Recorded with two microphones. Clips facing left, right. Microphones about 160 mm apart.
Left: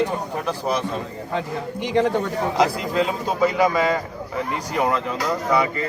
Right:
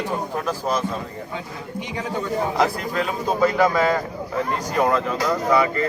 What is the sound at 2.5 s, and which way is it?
Speech, 15° left (ahead or behind).